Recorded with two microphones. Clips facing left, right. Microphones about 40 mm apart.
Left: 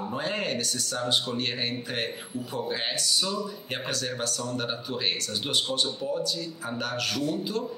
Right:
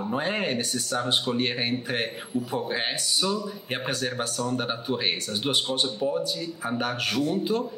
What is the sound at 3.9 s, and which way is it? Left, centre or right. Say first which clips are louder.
Speech: right 1 dB; right.